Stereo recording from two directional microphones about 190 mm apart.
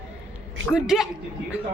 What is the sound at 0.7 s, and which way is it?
Speech, centre (ahead or behind).